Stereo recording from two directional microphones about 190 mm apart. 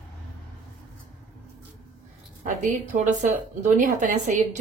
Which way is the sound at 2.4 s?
40° right (ahead or behind).